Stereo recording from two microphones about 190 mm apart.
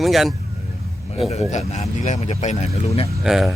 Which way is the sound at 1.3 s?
35° left (ahead or behind).